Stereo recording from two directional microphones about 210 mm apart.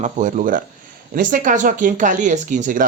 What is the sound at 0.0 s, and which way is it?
Speech, 35° right (ahead or behind).